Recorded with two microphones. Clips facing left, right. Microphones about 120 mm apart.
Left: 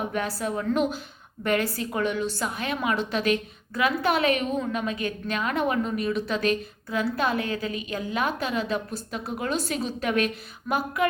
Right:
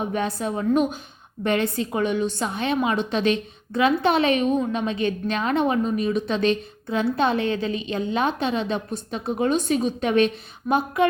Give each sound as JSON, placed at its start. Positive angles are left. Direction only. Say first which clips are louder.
{"t": 0.0, "sound": "a woman's voice", "louder": "right 3 dB", "side_deg": -25}